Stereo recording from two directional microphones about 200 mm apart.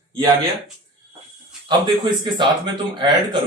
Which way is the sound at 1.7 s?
25° right (ahead or behind).